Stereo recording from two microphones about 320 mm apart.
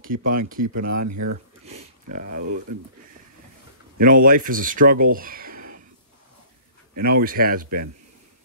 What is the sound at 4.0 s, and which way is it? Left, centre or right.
Speech, right.